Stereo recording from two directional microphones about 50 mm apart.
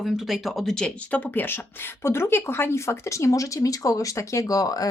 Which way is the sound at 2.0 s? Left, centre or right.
Left.